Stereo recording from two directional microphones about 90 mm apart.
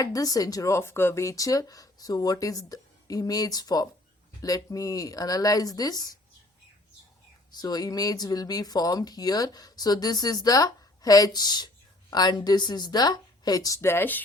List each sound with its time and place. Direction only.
0.0 s speech: 40° left (ahead or behind)
7.5 s speech: 45° left (ahead or behind)
13.8 s speech: 25° left (ahead or behind)